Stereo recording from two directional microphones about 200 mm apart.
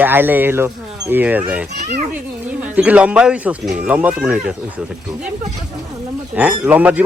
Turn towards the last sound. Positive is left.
turn(degrees=-10)  # may be behind; listen again after turning